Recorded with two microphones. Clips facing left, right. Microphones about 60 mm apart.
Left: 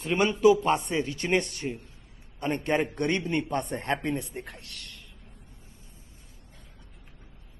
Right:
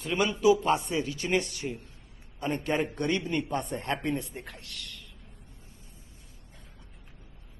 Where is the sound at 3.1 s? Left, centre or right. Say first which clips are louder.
Left 1 dB; left.